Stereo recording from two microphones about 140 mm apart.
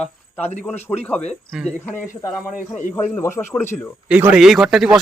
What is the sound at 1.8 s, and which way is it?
Speech, 15° left (ahead or behind).